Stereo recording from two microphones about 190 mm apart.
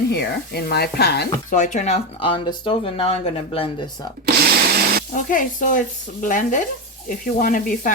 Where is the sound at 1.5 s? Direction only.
40° left (ahead or behind).